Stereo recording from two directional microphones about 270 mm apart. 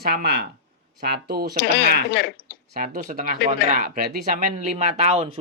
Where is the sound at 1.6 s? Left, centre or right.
Left.